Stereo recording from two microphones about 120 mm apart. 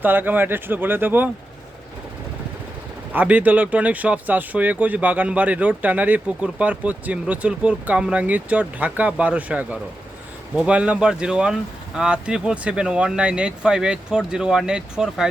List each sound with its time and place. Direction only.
0.0 s speech: 15° right (ahead or behind)
3.1 s speech: 15° right (ahead or behind)